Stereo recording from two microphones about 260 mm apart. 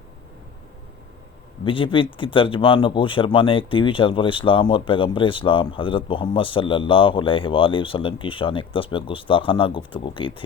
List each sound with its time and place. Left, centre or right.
1.6 s speech: centre